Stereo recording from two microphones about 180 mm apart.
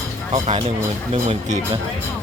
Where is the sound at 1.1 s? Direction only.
35° right (ahead or behind).